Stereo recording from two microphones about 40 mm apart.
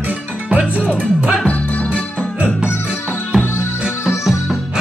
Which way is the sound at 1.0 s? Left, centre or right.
Right.